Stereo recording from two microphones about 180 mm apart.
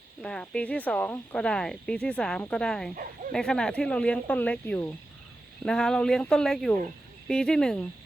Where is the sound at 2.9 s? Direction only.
50° right (ahead or behind).